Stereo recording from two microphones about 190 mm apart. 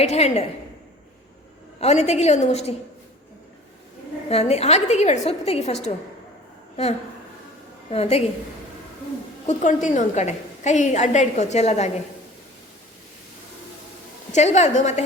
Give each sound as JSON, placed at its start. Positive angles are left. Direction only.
{"t": 0.0, "sound": "a woman's voice", "side_deg": 35}
{"t": 1.8, "sound": "a woman's voice", "side_deg": 35}
{"t": 4.3, "sound": "a woman's voice", "side_deg": 35}
{"t": 7.9, "sound": "a woman's voice", "side_deg": 35}
{"t": 9.5, "sound": "a woman's voice", "side_deg": 40}
{"t": 14.3, "sound": "a woman's voice", "side_deg": 35}